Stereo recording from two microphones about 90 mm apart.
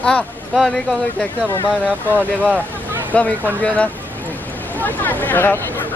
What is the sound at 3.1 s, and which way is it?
Speech, 15° left (ahead or behind).